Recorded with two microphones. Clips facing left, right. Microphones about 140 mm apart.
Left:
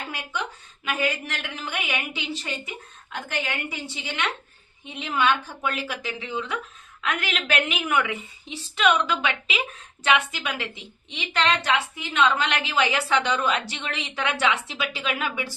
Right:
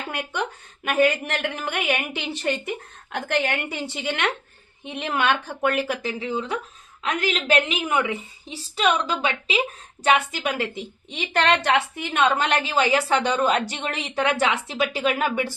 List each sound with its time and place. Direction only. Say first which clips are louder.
0.1 s a woman's voice: right 4 dB; 55° right (ahead or behind)